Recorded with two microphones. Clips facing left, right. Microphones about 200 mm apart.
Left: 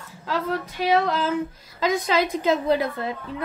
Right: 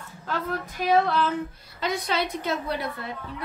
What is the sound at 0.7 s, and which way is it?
A woman's voice, 90° left.